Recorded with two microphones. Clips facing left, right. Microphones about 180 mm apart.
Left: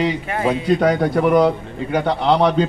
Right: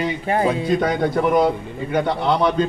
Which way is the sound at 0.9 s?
70° left (ahead or behind).